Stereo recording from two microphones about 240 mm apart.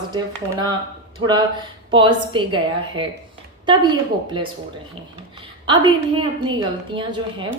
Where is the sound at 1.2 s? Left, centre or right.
Centre.